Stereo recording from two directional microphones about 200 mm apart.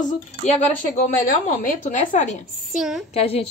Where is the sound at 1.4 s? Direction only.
40° left (ahead or behind).